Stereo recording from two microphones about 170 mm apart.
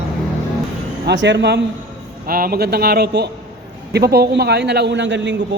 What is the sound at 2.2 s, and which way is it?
A man's voice, 60° right (ahead or behind).